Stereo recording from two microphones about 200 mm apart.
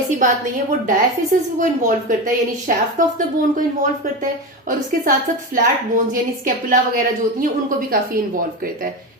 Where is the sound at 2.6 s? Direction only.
40° right (ahead or behind).